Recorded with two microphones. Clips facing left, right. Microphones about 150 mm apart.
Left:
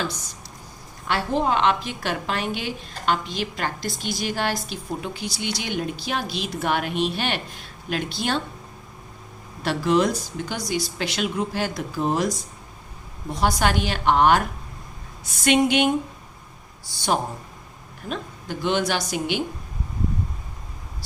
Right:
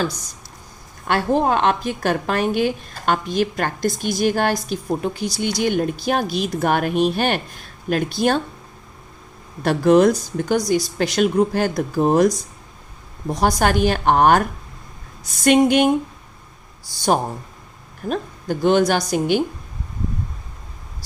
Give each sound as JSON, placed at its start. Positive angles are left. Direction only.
{"t": 1.0, "sound": "speech", "side_deg": -50}
{"t": 9.6, "sound": "speech", "side_deg": -45}
{"t": 13.3, "sound": "speech", "side_deg": -45}
{"t": 15.4, "sound": "speech", "side_deg": -45}
{"t": 18.1, "sound": "speech", "side_deg": -45}